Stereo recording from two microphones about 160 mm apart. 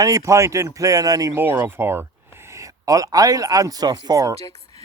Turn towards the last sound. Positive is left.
turn(degrees=-20)  # may be behind; listen again after turning